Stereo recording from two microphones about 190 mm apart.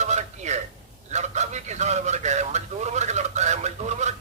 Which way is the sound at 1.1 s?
35° right (ahead or behind).